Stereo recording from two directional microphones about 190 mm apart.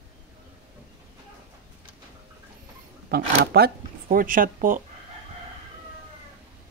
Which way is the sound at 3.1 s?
55° right (ahead or behind).